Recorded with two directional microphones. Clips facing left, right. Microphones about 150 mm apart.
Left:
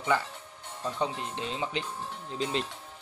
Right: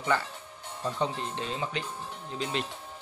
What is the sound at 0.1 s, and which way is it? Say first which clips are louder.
Speech: left 1 dB; 15° left (ahead or behind).